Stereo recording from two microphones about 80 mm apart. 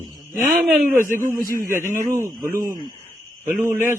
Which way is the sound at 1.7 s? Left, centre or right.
Right.